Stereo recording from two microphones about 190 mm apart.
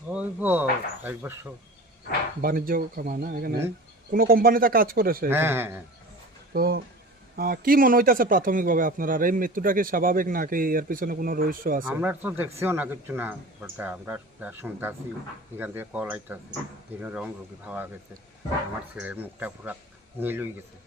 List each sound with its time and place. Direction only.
0.1 s speech: 10° right (ahead or behind)
2.4 s speech: 50° right (ahead or behind)
5.3 s speech: 10° right (ahead or behind)
6.5 s speech: 55° right (ahead or behind)
11.9 s speech: 10° right (ahead or behind)
18.9 s speech: 10° right (ahead or behind)